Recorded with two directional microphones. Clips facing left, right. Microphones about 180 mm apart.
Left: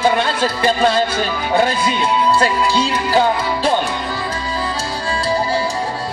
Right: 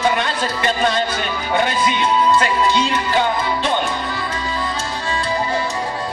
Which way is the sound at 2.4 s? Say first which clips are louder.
Left 1 dB; 35° left (ahead or behind).